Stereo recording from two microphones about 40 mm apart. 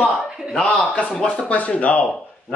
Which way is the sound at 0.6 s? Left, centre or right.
Left.